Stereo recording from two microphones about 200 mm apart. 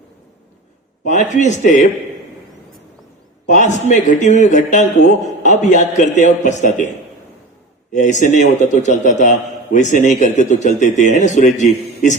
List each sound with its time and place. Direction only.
1.0 s a man's voice: 40° left (ahead or behind)
3.4 s a man's voice: 35° left (ahead or behind)
7.9 s a man's voice: 40° left (ahead or behind)